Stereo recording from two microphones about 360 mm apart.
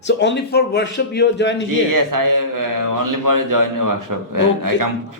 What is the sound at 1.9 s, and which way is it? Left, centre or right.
Speech, right.